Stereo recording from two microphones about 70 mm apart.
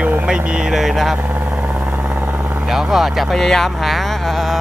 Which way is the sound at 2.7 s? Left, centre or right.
Centre.